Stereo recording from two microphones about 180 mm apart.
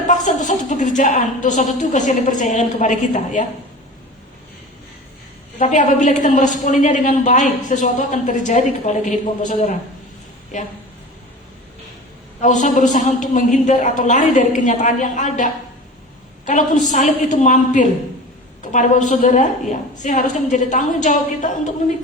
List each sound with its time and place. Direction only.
0.1 s a woman's voice: 45° left (ahead or behind)
5.5 s a woman's voice: 45° left (ahead or behind)
12.4 s a woman's voice: 45° left (ahead or behind)
16.8 s a woman's voice: 45° left (ahead or behind)